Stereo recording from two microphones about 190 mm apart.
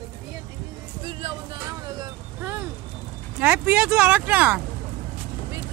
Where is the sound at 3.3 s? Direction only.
10° right (ahead or behind).